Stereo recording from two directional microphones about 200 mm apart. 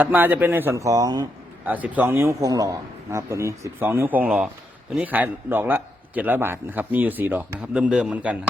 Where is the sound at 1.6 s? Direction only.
10° right (ahead or behind).